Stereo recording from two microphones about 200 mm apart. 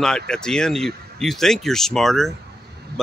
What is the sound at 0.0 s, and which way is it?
Speech, 5° left (ahead or behind).